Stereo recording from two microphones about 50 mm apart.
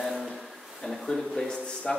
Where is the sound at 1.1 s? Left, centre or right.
Centre.